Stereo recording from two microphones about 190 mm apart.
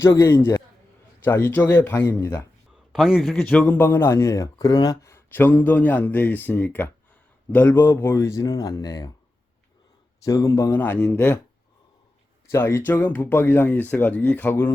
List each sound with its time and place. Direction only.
0.0 s a man's voice: 15° left (ahead or behind)
2.9 s a man's voice: centre (ahead or behind); by 9.1 s 20° left (ahead or behind)
10.2 s a man's voice: 15° left (ahead or behind)
12.5 s a man's voice: 10° left (ahead or behind)